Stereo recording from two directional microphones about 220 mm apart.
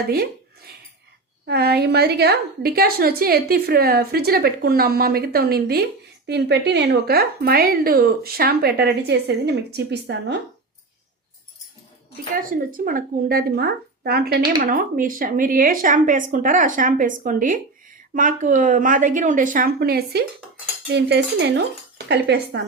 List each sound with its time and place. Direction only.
1.5 s a woman's voice: 45° right (ahead or behind)
12.3 s a woman's voice: 40° right (ahead or behind)